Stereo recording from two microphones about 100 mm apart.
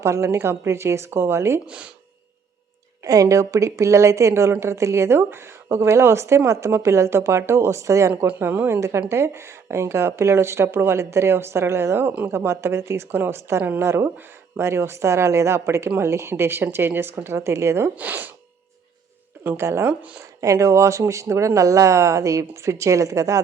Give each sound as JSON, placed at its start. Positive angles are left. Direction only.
{"t": 0.0, "sound": "speech", "side_deg": -30}
{"t": 1.6, "sound": "speech", "side_deg": -10}
{"t": 3.0, "sound": "speech", "side_deg": -35}
{"t": 17.9, "sound": "speech", "side_deg": -15}
{"t": 19.5, "sound": "speech", "side_deg": -25}
{"t": 19.9, "sound": "speech", "side_deg": -15}
{"t": 20.4, "sound": "speech", "side_deg": -30}